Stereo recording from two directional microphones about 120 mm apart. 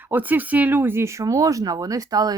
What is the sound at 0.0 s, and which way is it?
Speech, 15° right (ahead or behind).